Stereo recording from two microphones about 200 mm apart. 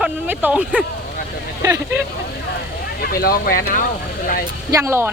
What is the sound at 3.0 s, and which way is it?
Speech, 50° left (ahead or behind).